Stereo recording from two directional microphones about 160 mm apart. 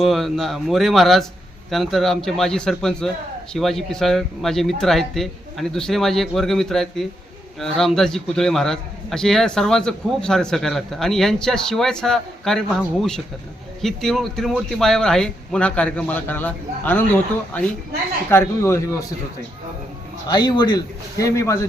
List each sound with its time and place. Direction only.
0.0 s a man's voice: centre (ahead or behind); by 18.8 s 15° left (ahead or behind)
20.2 s a man's voice: 25° left (ahead or behind)